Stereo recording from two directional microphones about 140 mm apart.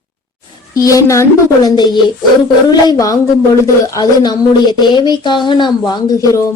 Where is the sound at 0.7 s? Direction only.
25° left (ahead or behind).